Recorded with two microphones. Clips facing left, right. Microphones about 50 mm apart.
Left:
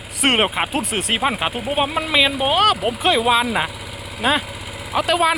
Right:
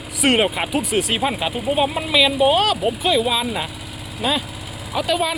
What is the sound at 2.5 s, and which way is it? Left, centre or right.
Speech, left.